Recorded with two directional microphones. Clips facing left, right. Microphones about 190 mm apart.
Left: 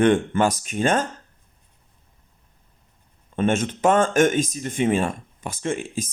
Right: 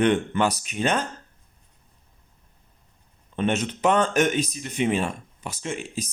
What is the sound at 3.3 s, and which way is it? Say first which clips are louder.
Speech: left 3 dB; 50° left (ahead or behind).